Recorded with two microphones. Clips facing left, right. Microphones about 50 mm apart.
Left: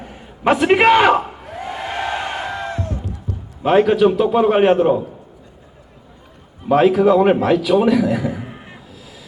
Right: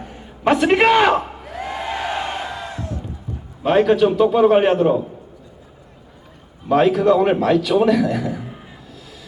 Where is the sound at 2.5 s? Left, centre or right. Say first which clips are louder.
Left 4 dB; left.